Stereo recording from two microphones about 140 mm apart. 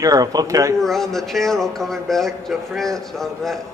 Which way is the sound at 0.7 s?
5° left (ahead or behind).